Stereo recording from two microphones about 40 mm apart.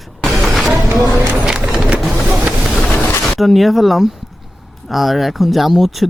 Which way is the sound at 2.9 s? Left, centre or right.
Left.